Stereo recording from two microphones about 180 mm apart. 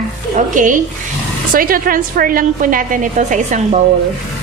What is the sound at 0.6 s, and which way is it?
A woman's voice, 45° right (ahead or behind).